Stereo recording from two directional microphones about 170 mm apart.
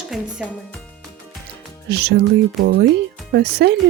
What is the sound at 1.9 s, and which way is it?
Speech, 75° right (ahead or behind).